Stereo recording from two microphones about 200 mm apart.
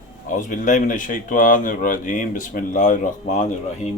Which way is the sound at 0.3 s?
40° left (ahead or behind).